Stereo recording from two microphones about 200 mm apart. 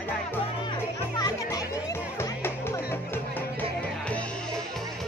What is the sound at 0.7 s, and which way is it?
Music, 20° left (ahead or behind).